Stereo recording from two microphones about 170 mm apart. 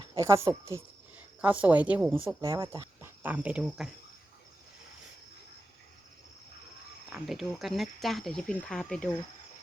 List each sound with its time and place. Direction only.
0.0 s speech: 20° right (ahead or behind); by 2.1 s 5° right (ahead or behind)
2.4 s speech: 20° right (ahead or behind)
3.2 s speech: 10° right (ahead or behind)
7.1 s speech: centre (ahead or behind)